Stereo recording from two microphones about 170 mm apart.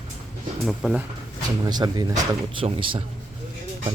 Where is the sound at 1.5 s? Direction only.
25° right (ahead or behind).